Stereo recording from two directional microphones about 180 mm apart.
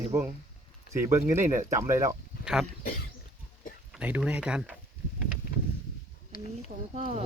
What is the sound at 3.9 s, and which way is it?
Speech, 5° right (ahead or behind).